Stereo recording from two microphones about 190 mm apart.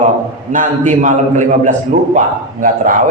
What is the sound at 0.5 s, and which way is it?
Speech, 40° right (ahead or behind).